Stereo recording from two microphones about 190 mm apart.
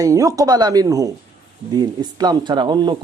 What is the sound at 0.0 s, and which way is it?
Speech, 15° right (ahead or behind).